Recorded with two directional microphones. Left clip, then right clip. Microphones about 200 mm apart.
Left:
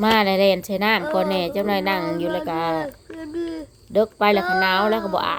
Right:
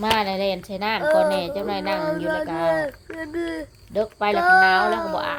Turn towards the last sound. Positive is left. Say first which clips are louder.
# left 2 dB
turn(degrees=40)  # may be behind; listen again after turning